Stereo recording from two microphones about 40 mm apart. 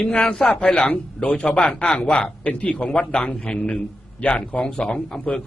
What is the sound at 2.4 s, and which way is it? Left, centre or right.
A man's voice, left.